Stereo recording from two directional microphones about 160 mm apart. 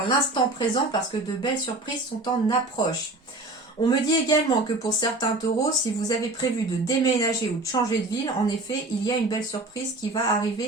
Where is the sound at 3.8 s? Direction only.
25° left (ahead or behind).